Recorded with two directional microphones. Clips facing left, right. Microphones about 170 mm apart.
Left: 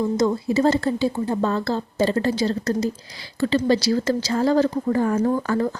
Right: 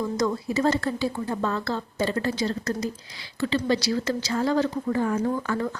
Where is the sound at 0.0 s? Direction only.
25° left (ahead or behind).